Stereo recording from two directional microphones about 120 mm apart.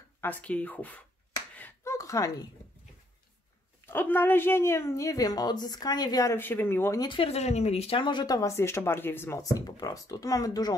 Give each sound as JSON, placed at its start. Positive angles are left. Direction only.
{"t": 0.2, "sound": "speech", "side_deg": 15}
{"t": 1.9, "sound": "a sound", "side_deg": 25}
{"t": 3.8, "sound": "speech", "side_deg": 15}
{"t": 7.0, "sound": "speech", "side_deg": 45}